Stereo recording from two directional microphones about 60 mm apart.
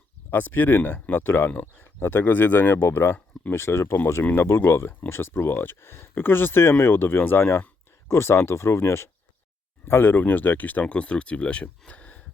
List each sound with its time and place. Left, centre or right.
0.3 s speech: left
1.6 s speech: left
2.0 s speech: left
2.8 s speech: left; by 11.7 s centre
11.9 s a sound: left